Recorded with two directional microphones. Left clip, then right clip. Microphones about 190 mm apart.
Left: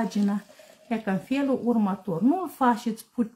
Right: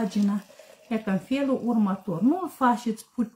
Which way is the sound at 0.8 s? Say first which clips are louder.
Even; 45° left (ahead or behind).